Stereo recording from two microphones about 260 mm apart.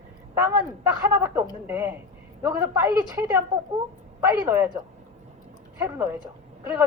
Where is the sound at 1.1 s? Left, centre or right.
Centre.